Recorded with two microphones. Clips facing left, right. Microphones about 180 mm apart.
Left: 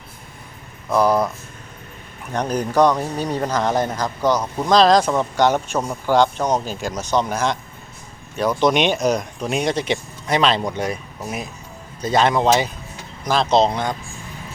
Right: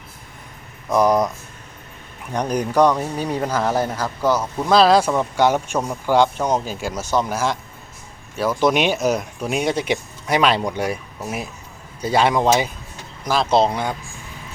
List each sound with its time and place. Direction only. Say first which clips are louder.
0.9 s speech: right 1 dB; 20° right (ahead or behind)
2.3 s speech: even; 10° right (ahead or behind)